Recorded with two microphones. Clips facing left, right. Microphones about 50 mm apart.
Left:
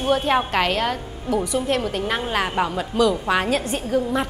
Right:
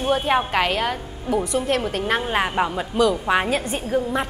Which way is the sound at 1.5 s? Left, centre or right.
Right.